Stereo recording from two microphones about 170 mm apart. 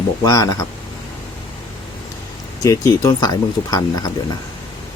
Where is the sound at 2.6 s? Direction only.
20° left (ahead or behind).